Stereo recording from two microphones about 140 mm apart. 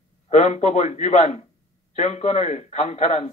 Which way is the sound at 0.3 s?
55° left (ahead or behind).